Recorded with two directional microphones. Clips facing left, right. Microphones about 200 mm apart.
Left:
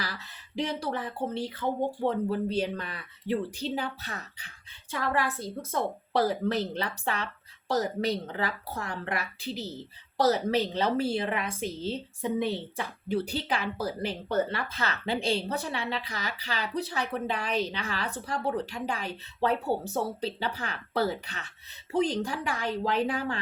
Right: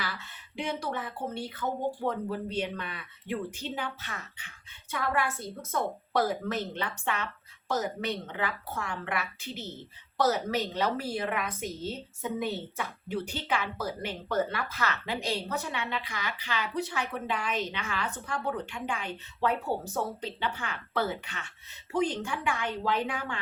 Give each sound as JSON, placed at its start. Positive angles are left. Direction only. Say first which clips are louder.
{"t": 0.0, "sound": "a woman's voice", "louder": "even", "side_deg": 35}